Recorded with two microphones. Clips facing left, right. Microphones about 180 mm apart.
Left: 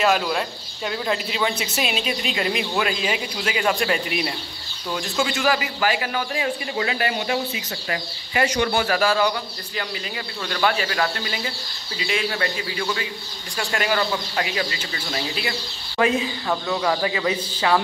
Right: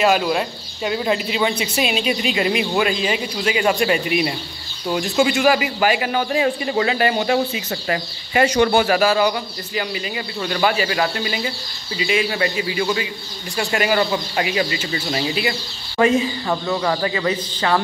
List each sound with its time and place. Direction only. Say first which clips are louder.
0.0 s speech: right 3 dB; 5° right (ahead or behind)
4.8 s a man's voice: right 6 dB; 15° right (ahead or behind)
8.8 s speech: right 4 dB; 10° right (ahead or behind)
16.0 s speech: right 4 dB; centre (ahead or behind)